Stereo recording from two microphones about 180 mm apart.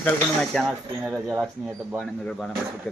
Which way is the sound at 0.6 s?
15° right (ahead or behind).